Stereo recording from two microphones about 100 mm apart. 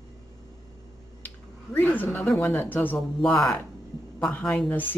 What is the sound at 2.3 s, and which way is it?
Speech, 15° left (ahead or behind).